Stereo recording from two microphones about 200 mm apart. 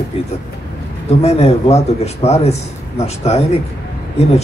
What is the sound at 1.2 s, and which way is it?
A man's voice, 30° left (ahead or behind).